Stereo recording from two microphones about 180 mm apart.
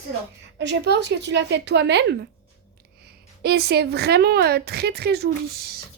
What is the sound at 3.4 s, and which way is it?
A woman's voice, 60° right (ahead or behind).